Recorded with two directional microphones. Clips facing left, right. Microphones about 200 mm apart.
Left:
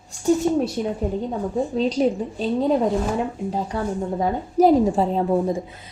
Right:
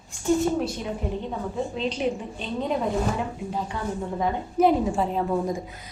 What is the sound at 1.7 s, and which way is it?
A woman's voice, 40° left (ahead or behind).